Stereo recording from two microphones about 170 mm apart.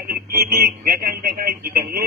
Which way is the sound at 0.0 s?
60° right (ahead or behind).